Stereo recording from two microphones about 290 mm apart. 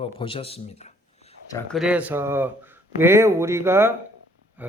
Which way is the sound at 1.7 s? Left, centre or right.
Centre.